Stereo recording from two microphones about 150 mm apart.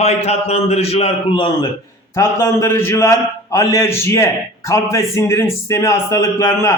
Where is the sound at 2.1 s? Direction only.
15° left (ahead or behind).